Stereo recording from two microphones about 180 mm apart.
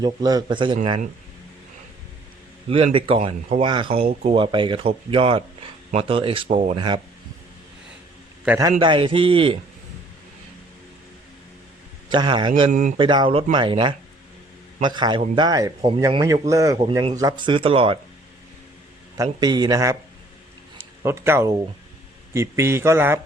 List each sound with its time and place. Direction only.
0.0 s speech: 20° right (ahead or behind)
2.6 s speech: 30° right (ahead or behind)
8.4 s speech: 15° right (ahead or behind)
8.8 s speech: 25° right (ahead or behind)
12.0 s speech: 25° right (ahead or behind)
12.7 s speech: 45° right (ahead or behind)
13.0 s speech: 25° right (ahead or behind)
19.1 s speech: 20° right (ahead or behind)
20.7 s a sound: 15° right (ahead or behind)
22.3 s speech: 15° right (ahead or behind)